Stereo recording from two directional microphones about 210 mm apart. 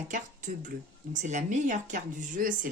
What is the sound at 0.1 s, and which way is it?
Speech, 40° right (ahead or behind).